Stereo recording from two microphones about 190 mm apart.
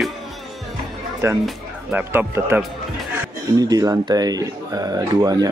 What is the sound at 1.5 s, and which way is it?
Speech, 10° right (ahead or behind).